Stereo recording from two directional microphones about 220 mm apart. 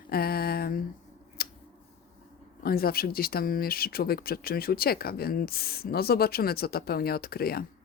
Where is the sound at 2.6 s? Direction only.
45° left (ahead or behind).